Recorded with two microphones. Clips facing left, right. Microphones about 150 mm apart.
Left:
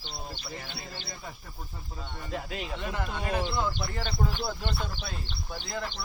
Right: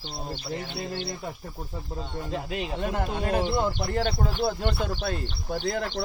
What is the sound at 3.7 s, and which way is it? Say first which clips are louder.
Speech: right 8 dB; 60° right (ahead or behind).